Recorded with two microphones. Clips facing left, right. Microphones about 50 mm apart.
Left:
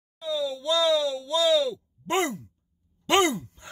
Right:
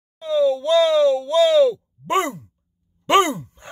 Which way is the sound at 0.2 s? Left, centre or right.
Right.